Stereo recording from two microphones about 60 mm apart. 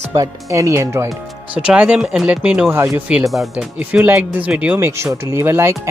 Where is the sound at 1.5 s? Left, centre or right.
Centre.